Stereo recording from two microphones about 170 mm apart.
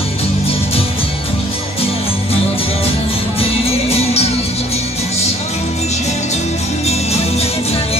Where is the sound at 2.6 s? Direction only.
35° left (ahead or behind).